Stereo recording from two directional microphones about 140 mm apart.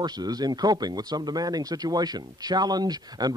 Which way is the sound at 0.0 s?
30° right (ahead or behind).